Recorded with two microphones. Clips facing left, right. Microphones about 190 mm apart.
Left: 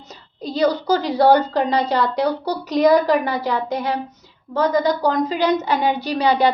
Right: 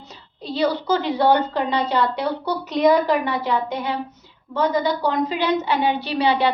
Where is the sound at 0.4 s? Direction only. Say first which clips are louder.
Left 3 dB; 40° left (ahead or behind).